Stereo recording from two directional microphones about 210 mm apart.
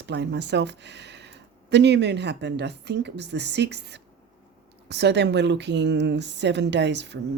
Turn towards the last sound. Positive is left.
turn(degrees=-55)  # may be behind; listen again after turning